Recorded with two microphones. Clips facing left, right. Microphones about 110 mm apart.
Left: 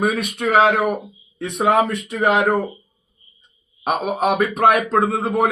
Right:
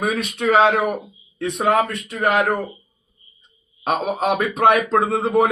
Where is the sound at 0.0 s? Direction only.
10° left (ahead or behind).